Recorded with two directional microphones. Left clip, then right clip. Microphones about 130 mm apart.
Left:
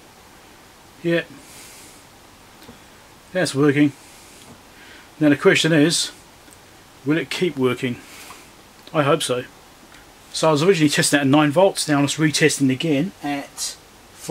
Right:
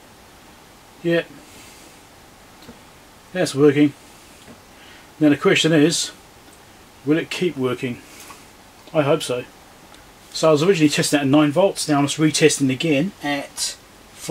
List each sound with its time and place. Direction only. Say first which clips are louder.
3.3 s speech: right 2 dB; 35° left (ahead or behind)
5.2 s speech: even; 35° left (ahead or behind)
7.1 s speech: right 1 dB; 35° left (ahead or behind)
8.9 s speech: even; 35° left (ahead or behind)
10.4 s speech: right 1 dB; 40° left (ahead or behind)